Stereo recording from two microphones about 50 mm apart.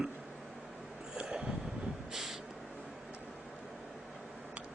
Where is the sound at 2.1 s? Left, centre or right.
Centre.